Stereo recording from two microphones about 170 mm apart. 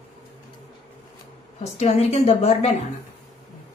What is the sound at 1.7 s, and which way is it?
Speech, 40° left (ahead or behind).